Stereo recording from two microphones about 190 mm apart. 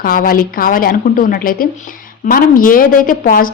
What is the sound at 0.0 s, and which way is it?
A woman's voice, 50° left (ahead or behind).